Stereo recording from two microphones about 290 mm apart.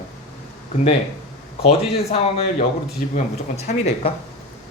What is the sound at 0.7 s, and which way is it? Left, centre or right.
Speech, left.